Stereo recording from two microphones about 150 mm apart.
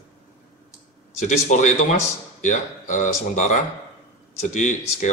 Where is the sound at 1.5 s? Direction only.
50° left (ahead or behind).